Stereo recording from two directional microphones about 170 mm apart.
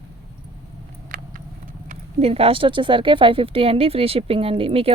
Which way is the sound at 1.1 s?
50° right (ahead or behind).